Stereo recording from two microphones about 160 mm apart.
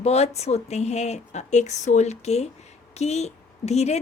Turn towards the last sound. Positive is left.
turn(degrees=45)  # may be behind; listen again after turning